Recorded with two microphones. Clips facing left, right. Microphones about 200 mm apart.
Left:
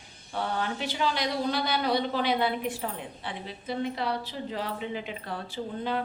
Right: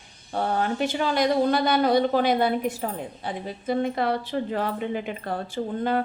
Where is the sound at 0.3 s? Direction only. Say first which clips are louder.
Right 6 dB; 45° right (ahead or behind).